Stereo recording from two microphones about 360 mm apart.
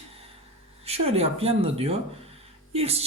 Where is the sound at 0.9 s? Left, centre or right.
Centre.